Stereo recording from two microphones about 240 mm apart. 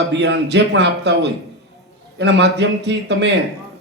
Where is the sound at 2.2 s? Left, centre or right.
Right.